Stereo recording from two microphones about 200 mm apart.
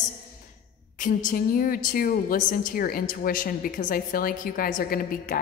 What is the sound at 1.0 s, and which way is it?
A woman's voice, 40° left (ahead or behind).